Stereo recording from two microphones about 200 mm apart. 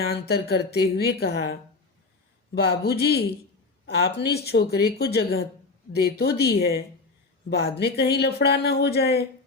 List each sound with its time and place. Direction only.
0.0 s speech: 50° left (ahead or behind)
2.6 s speech: 55° left (ahead or behind)